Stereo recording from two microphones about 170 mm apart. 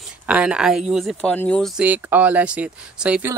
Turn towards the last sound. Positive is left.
turn(degrees=-5)  # may be behind; listen again after turning